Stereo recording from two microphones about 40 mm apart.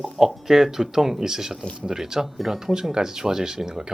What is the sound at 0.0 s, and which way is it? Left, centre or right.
Speech, centre.